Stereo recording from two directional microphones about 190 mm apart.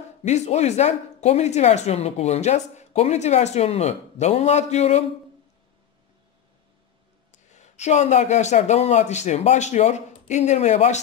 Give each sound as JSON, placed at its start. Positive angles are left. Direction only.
{"t": 0.2, "sound": "speech", "side_deg": 35}
{"t": 7.5, "sound": "speech", "side_deg": 35}